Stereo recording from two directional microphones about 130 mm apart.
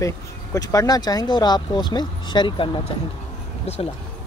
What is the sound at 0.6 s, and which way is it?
Speech, 25° left (ahead or behind).